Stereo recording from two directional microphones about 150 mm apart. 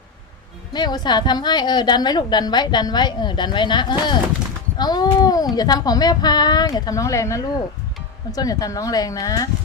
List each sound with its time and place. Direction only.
0.7 s a woman's voice: 30° left (ahead or behind)